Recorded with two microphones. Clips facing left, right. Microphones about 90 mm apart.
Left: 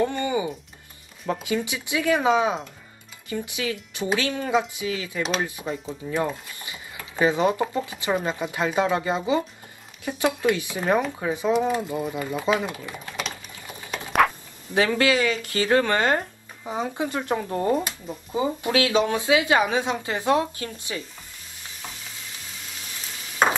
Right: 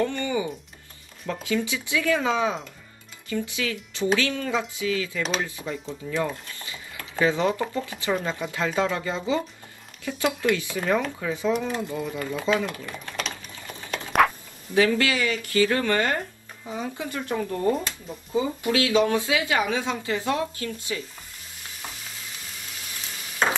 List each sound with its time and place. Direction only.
0.0 s speech: 20° left (ahead or behind)
6.4 s a sound: 20° left (ahead or behind)
8.1 s speech: 25° left (ahead or behind)
12.5 s typing: 15° left (ahead or behind)
14.7 s speech: 30° left (ahead or behind)
16.6 s speech: 60° left (ahead or behind)
17.0 s speech: 25° left (ahead or behind)